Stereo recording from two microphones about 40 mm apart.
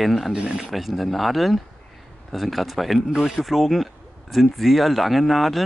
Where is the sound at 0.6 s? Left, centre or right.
Centre.